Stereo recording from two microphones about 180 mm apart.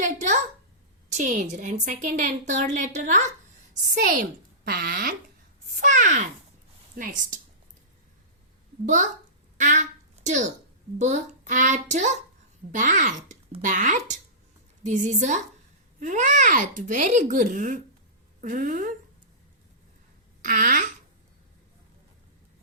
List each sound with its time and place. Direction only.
0.0 s a sound: 45° right (ahead or behind)
1.1 s a woman's voice: 45° right (ahead or behind)
9.6 s a child's voice: 45° right (ahead or behind)
20.4 s speech: 50° right (ahead or behind)